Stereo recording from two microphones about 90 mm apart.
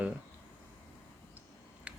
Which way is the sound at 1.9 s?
15° right (ahead or behind).